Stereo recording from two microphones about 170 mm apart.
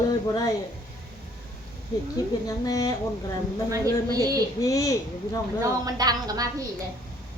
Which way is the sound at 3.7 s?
20° right (ahead or behind).